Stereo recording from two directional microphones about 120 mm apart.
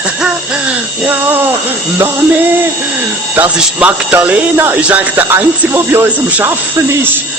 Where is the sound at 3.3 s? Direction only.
15° right (ahead or behind).